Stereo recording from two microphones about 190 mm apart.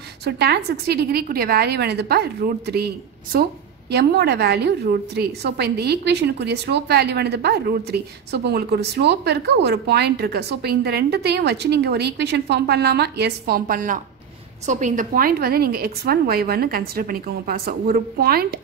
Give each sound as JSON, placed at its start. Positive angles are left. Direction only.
{"t": 0.2, "sound": "a woman's voice", "side_deg": -60}
{"t": 3.9, "sound": "a woman's voice", "side_deg": -60}